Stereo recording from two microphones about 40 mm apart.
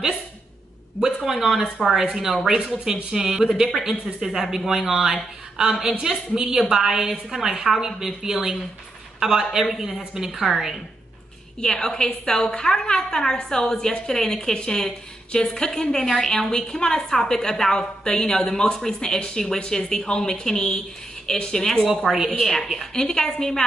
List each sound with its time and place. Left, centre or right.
1.0 s a woman's voice: centre
11.6 s a woman's voice: centre
21.8 s a woman's voice: centre
22.4 s a woman's voice: centre